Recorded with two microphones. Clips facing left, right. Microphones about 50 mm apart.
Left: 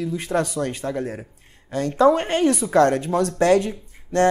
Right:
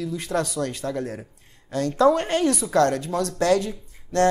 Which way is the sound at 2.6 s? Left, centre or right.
Left.